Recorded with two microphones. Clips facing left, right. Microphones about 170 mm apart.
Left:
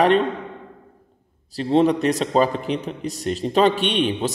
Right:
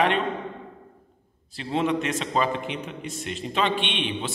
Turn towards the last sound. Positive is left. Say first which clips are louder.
# left 8 dB
turn(degrees=40)  # may be behind; listen again after turning